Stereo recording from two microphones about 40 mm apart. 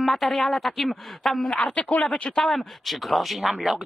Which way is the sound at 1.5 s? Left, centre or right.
Left.